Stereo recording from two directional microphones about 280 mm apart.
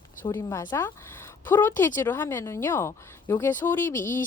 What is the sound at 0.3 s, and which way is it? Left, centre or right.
Speech, centre.